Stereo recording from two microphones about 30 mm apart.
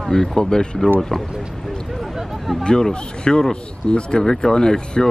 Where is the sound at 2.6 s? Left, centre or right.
Left.